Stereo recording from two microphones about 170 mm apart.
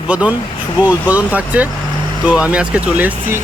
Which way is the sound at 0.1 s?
10° right (ahead or behind).